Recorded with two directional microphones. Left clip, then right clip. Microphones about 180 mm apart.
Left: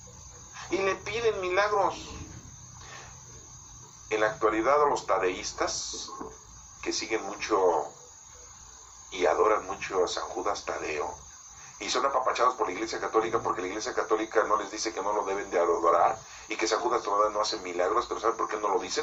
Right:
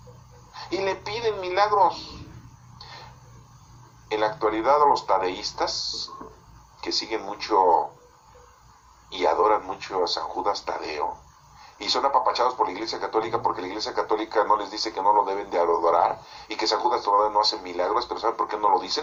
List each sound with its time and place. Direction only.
0.5 s speech: 30° right (ahead or behind)
4.1 s speech: 30° right (ahead or behind)
6.8 s speech: 30° right (ahead or behind)
9.0 s speech: 30° right (ahead or behind)